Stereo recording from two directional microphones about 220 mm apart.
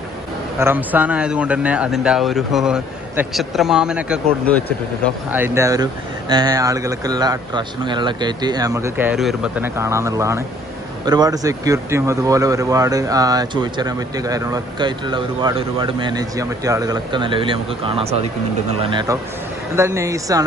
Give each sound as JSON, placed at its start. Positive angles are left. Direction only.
{"t": 0.6, "sound": "speech", "side_deg": -10}